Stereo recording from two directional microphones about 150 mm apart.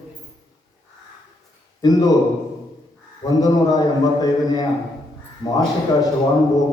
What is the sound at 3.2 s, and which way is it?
A man's voice, 25° left (ahead or behind).